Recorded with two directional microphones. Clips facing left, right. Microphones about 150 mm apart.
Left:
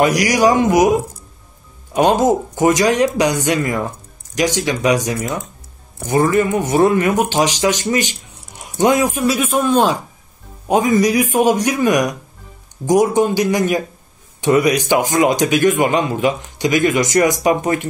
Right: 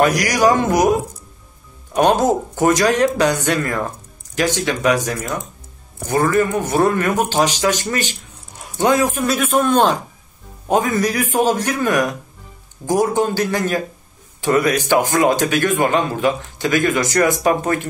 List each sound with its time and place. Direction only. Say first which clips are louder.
0.0 s speech: left 1 dB; 15° left (ahead or behind)
2.0 s speech: left 1 dB; 15° left (ahead or behind)